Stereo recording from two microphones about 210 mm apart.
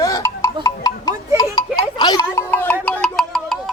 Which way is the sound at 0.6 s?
15° left (ahead or behind).